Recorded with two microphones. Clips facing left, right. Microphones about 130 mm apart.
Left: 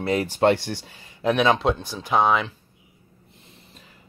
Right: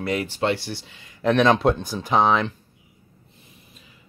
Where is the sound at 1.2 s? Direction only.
5° left (ahead or behind).